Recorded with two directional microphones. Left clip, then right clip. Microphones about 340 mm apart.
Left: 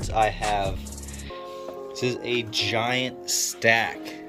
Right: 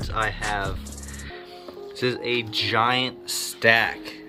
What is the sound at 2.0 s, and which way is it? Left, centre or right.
Speech, centre.